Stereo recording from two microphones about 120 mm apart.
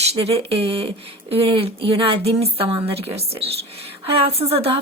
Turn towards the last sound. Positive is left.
turn(degrees=-55)  # may be behind; listen again after turning